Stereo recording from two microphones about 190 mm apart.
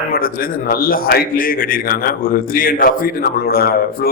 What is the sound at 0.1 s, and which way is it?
A man's voice, 50° left (ahead or behind).